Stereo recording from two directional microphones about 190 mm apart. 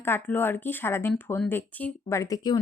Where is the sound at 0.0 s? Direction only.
10° left (ahead or behind).